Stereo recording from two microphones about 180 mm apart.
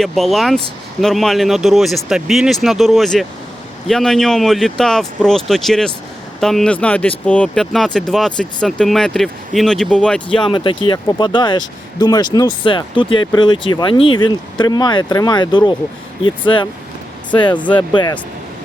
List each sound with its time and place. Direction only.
0.0 s speech: centre (ahead or behind)
10.3 s speech: 25° left (ahead or behind)